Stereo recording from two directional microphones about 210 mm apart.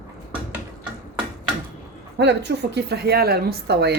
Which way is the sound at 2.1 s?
55° right (ahead or behind).